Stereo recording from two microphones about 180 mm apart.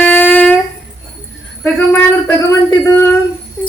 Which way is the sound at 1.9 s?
15° left (ahead or behind).